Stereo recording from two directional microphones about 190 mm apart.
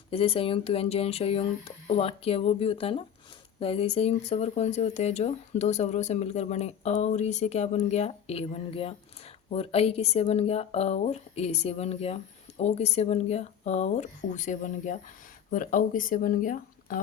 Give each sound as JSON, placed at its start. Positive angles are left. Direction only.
{"t": 0.1, "sound": "speech", "side_deg": 30}